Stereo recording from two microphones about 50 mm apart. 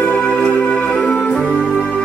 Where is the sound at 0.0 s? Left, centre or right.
Left.